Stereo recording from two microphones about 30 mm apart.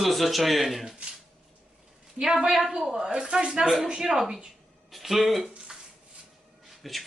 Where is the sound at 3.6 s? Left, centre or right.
Centre.